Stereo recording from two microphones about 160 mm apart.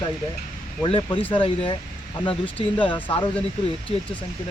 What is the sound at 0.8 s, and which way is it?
Speech, 35° left (ahead or behind).